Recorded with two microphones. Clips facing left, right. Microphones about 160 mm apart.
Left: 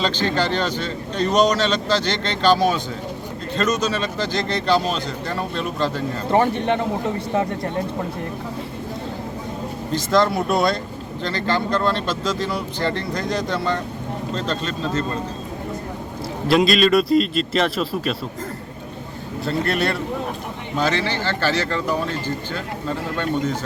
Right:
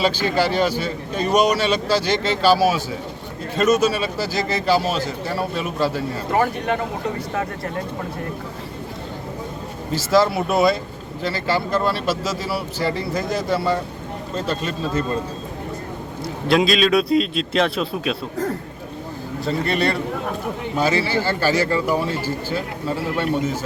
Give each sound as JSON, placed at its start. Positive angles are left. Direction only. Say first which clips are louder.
{"t": 0.0, "sound": "speech", "louder": "right 2 dB", "side_deg": -10}
{"t": 6.3, "sound": "speech", "louder": "left 2 dB", "side_deg": 25}
{"t": 9.9, "sound": "a man's voice", "louder": "right 1 dB", "side_deg": -5}
{"t": 16.5, "sound": "a man's voice", "louder": "left 1 dB", "side_deg": 0}
{"t": 19.5, "sound": "a man's voice", "louder": "right 1 dB", "side_deg": 0}